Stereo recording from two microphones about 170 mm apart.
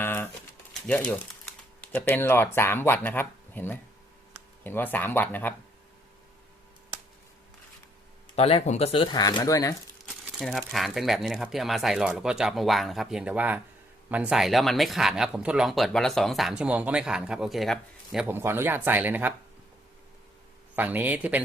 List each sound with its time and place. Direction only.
0.0 s a sound: 15° left (ahead or behind)
0.7 s speech: 10° left (ahead or behind)
8.4 s speech: 35° left (ahead or behind); by 9.7 s 20° left (ahead or behind)
10.1 s speech: centre (ahead or behind)
20.7 s speech: 10° right (ahead or behind)